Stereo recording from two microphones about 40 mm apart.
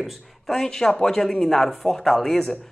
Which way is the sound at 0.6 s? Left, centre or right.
Centre.